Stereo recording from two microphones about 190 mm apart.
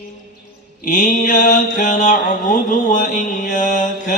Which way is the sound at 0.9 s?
40° left (ahead or behind).